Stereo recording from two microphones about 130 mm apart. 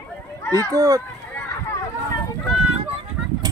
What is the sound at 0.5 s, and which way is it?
Speech, 25° right (ahead or behind).